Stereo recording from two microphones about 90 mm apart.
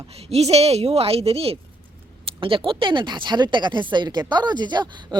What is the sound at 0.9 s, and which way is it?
Speech, 90° right.